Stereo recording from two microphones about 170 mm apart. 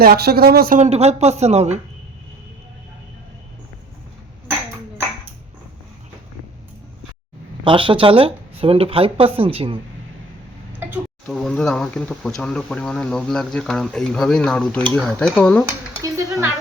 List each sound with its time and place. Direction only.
0.0 s speech: 65° right (ahead or behind)
0.8 s speech: 40° right (ahead or behind)
7.6 s speech: 30° right (ahead or behind)
10.7 s tick-tock: 10° right (ahead or behind)
11.3 s speech: 5° left (ahead or behind)
16.0 s dishes: 20° right (ahead or behind)